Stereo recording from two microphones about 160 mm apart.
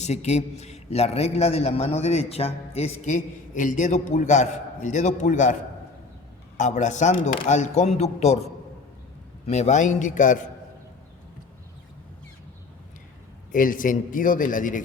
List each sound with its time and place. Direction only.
0.0 s a man's voice: 45° left (ahead or behind)
6.6 s a man's voice: 50° left (ahead or behind)
9.5 s a man's voice: 45° left (ahead or behind)
13.5 s a man's voice: 55° left (ahead or behind)